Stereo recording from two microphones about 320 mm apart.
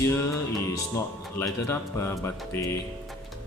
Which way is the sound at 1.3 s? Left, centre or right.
Centre.